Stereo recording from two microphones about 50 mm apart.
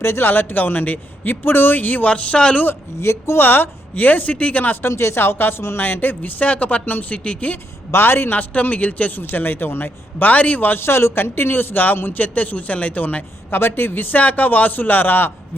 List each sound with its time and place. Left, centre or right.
0.0 s speech: left
3.0 s speech: left
3.4 s speech: left
4.8 s speech: left
7.9 s a man's voice: left
8.4 s speech: left
10.8 s speech: left
13.5 s speech: left